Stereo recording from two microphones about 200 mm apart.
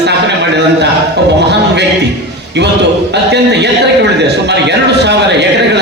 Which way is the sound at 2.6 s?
60° right (ahead or behind).